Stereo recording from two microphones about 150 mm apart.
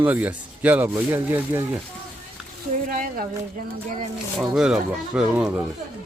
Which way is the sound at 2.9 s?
75° right (ahead or behind).